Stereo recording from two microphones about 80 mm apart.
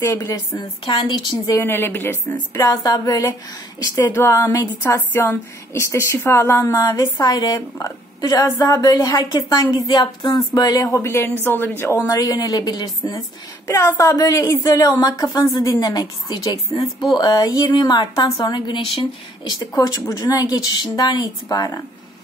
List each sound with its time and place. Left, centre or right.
0.0 s speech: left
0.6 s a woman's voice: left
1.6 s a woman's voice: left
2.5 s a woman's voice: left
4.1 s speech: left
5.1 s a woman's voice: left
10.9 s a woman's voice: left
12.1 s a woman's voice: left
13.7 s a woman's voice: left
19.8 s a woman's voice: left